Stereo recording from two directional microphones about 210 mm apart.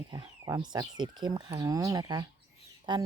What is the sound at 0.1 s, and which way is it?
A woman's voice, 20° right (ahead or behind).